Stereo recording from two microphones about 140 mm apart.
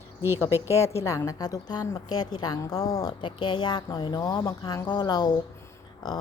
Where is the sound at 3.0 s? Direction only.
35° left (ahead or behind).